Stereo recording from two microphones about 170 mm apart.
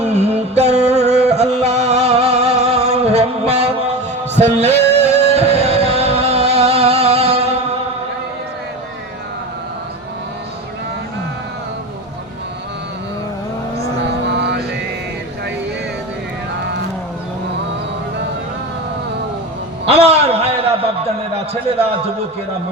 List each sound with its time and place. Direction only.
0.0 s music: 40° right (ahead or behind)
14.3 s mantra: 85° right
19.8 s a sound: 35° right (ahead or behind)